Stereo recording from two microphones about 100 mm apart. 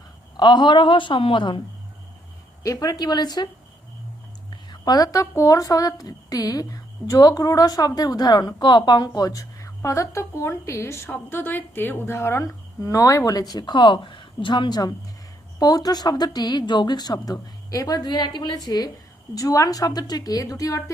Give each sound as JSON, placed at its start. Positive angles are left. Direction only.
{"t": 0.3, "sound": "speech", "side_deg": 50}
{"t": 2.6, "sound": "speech", "side_deg": 35}
{"t": 4.7, "sound": "a woman's voice", "side_deg": 40}